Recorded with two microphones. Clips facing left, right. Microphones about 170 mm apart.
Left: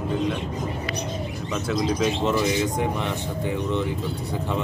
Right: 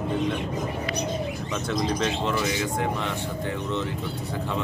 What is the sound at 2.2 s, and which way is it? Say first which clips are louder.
Speech: left 4 dB; 20° left (ahead or behind).